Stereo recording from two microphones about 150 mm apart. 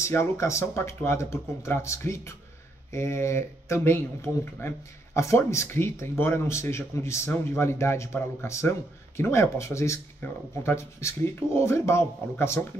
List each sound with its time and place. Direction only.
0.0 s speech: 20° left (ahead or behind)